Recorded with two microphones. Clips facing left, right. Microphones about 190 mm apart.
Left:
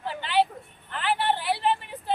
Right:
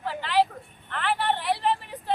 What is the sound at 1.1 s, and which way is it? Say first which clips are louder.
Vehicle: even; centre (ahead or behind).